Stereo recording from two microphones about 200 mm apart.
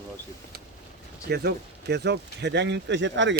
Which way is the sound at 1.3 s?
55° right (ahead or behind).